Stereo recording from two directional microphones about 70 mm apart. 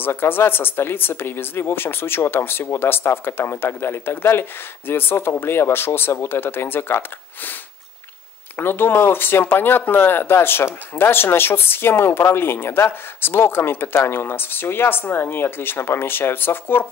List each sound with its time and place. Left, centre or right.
0.0 s speech: left
8.5 s speech: left